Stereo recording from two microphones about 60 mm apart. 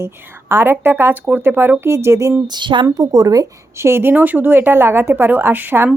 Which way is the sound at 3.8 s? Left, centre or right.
Right.